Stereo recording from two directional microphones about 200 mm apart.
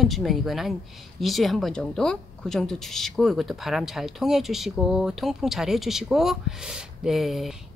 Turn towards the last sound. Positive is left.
turn(degrees=0)  # may be behind; listen again after turning